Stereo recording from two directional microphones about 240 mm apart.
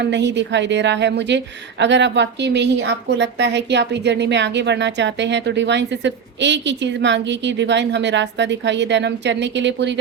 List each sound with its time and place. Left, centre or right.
0.0 s a woman's voice: right